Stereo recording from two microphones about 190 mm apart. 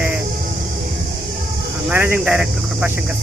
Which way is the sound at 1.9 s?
5° right (ahead or behind).